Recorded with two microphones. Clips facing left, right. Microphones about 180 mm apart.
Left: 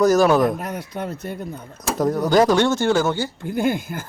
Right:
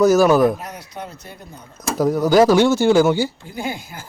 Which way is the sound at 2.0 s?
Centre (ahead or behind).